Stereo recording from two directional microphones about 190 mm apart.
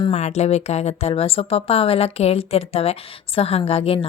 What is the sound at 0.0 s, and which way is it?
Speech, 35° left (ahead or behind).